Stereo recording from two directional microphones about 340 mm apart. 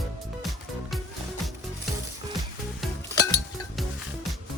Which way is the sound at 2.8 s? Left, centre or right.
Centre.